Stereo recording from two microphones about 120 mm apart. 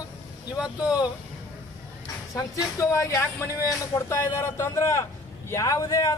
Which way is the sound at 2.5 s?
25° left (ahead or behind).